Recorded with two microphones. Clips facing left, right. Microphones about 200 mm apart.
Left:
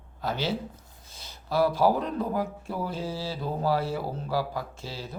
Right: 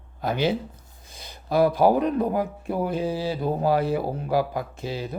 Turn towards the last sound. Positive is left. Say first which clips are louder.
# right 8 dB
turn(degrees=-15)  # may be behind; listen again after turning